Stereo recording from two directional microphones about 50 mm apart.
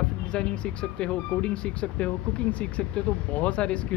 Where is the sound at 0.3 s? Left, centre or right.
Centre.